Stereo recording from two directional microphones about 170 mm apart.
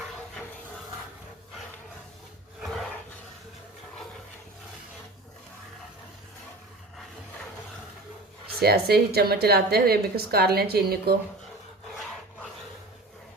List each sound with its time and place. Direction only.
8.5 s a woman's voice: 70° right (ahead or behind)